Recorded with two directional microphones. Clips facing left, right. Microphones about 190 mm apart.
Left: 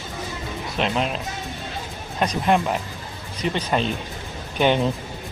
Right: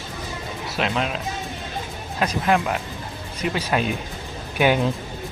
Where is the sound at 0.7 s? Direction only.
Centre (ahead or behind).